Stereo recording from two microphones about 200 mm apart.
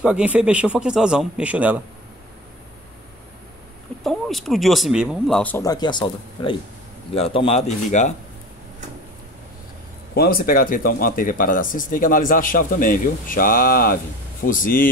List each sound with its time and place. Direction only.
0.0 s speech: 5° right (ahead or behind)
4.0 s speech: centre (ahead or behind); by 8.1 s 35° left (ahead or behind)
10.1 s speech: 50° left (ahead or behind)